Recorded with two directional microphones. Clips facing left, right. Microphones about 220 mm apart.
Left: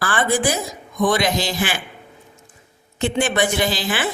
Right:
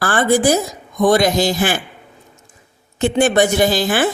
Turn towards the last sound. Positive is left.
turn(degrees=-45)  # may be behind; listen again after turning